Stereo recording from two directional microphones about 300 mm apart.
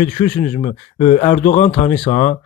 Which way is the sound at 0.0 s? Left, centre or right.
Left.